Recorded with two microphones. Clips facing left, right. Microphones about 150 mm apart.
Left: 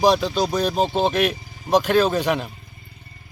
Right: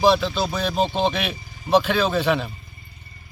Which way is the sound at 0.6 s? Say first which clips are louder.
Left 1 dB; 10° left (ahead or behind).